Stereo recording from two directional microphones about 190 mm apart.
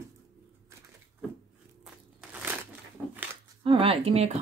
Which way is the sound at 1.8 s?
5° right (ahead or behind).